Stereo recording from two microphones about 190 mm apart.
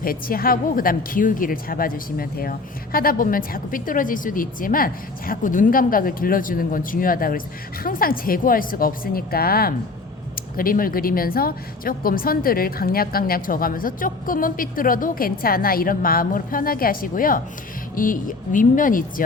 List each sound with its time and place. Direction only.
0.0 s speech: 50° left (ahead or behind)